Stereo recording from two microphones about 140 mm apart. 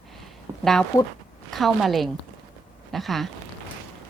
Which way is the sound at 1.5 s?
Centre (ahead or behind).